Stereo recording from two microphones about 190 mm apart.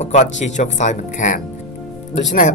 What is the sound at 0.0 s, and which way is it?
Speech, 40° left (ahead or behind).